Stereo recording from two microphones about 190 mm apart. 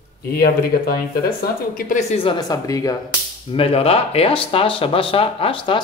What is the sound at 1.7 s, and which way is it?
Speech, 40° left (ahead or behind).